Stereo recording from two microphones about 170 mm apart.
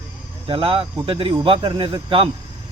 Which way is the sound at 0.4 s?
30° right (ahead or behind).